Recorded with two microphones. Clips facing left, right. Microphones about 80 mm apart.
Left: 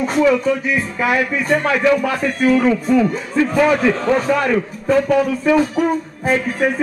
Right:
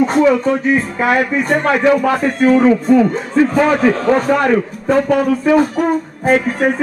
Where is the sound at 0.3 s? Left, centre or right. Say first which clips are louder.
Right 3 dB; right.